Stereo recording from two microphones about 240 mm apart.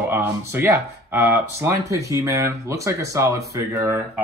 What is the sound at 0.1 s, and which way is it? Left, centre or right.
Speech, centre.